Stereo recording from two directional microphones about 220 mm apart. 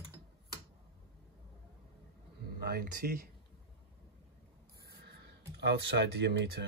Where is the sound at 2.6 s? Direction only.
45° right (ahead or behind).